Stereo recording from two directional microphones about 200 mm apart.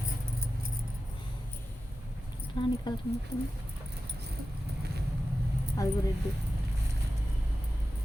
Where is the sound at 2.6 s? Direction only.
25° left (ahead or behind).